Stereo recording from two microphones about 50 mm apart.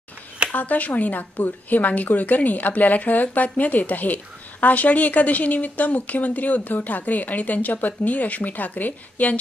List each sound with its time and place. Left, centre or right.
0.5 s speech: left